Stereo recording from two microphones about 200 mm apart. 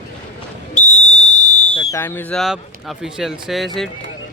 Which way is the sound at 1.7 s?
10° left (ahead or behind).